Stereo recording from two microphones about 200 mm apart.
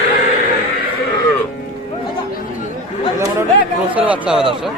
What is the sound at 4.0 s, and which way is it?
Speech, 5° right (ahead or behind).